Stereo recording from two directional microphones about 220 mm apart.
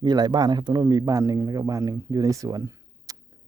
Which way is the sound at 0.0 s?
20° right (ahead or behind).